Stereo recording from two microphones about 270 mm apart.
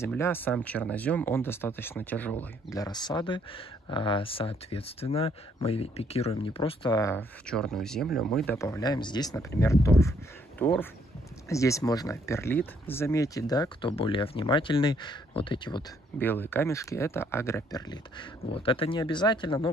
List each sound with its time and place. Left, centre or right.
0.0 s speech: centre